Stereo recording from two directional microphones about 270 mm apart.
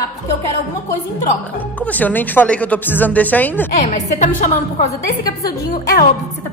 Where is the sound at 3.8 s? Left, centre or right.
Left.